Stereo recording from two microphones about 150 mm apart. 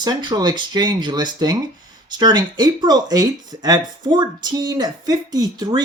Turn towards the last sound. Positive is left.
turn(degrees=-25)  # may be behind; listen again after turning